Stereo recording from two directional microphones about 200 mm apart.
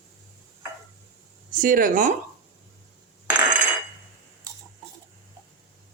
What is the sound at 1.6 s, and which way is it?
Speech, 45° right (ahead or behind).